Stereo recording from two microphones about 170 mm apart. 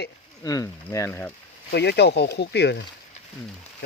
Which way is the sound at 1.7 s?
75° left (ahead or behind).